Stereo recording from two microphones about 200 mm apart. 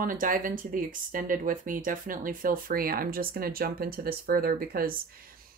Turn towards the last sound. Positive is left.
turn(degrees=-45)  # may be behind; listen again after turning